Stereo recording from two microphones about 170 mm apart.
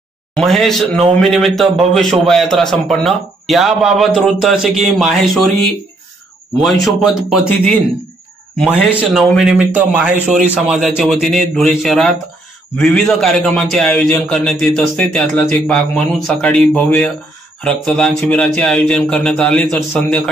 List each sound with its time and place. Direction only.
0.4 s a man's voice: centre (ahead or behind)
6.6 s a man's voice: centre (ahead or behind)
8.8 s a man's voice: centre (ahead or behind)